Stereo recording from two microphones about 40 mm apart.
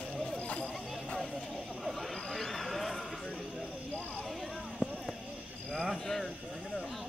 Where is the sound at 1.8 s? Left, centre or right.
Centre.